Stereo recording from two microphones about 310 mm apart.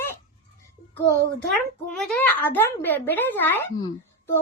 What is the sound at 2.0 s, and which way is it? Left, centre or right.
A child's voice, centre.